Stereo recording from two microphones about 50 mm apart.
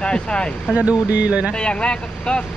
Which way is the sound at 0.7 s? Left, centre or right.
Right.